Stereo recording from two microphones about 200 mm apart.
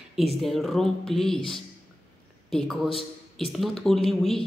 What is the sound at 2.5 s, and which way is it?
Speech, centre (ahead or behind).